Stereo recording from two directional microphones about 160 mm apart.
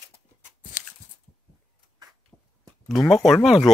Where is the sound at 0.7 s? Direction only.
50° left (ahead or behind).